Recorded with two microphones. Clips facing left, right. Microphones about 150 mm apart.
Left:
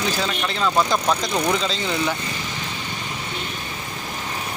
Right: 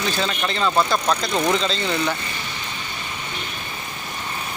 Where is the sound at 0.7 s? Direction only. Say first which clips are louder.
Left 1 dB; 15° left (ahead or behind).